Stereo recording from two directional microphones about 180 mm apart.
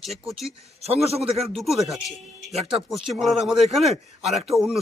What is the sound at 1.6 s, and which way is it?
A man's voice, centre (ahead or behind).